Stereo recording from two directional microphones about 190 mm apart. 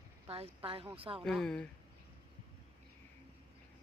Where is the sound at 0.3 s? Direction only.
30° right (ahead or behind).